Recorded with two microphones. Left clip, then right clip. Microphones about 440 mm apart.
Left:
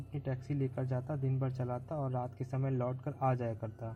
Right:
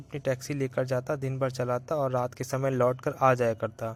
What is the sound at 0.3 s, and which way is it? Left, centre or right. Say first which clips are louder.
Speech: right 10 dB; right.